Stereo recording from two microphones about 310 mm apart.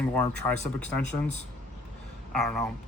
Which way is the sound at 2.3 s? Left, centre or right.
Centre.